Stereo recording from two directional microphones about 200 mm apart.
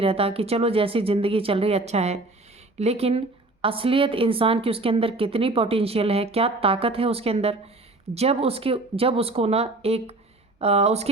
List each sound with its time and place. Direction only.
0.0 s speech: 30° right (ahead or behind)